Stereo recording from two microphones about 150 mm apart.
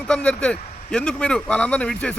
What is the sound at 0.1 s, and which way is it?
A man's voice, 5° left (ahead or behind).